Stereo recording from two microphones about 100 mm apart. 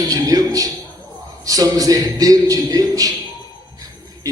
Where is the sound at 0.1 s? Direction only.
40° right (ahead or behind).